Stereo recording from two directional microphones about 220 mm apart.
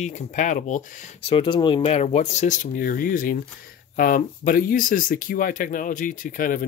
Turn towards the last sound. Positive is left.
turn(degrees=40)  # may be behind; listen again after turning